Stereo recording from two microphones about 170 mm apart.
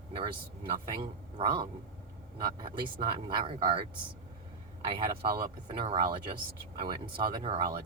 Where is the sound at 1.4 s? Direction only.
30° right (ahead or behind).